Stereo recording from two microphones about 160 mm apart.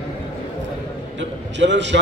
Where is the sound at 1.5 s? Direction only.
90° right.